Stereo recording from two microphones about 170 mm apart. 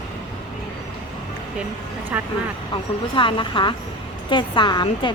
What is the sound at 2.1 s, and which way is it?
Vehicle, 10° right (ahead or behind).